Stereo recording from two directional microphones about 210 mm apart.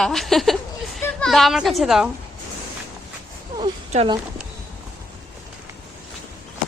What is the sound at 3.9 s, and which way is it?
Speech, 30° right (ahead or behind).